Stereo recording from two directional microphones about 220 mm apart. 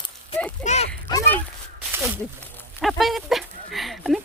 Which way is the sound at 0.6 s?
30° left (ahead or behind).